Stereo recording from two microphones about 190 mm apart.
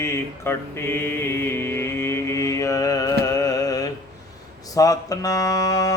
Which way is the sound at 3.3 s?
20° left (ahead or behind).